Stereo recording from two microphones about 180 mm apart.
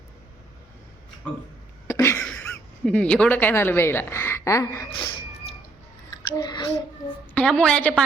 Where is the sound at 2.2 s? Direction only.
5° left (ahead or behind).